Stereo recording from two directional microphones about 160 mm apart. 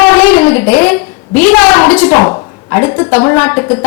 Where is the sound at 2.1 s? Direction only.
20° left (ahead or behind).